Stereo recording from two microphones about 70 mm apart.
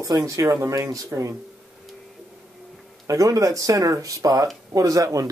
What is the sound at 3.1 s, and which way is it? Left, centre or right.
Speech, right.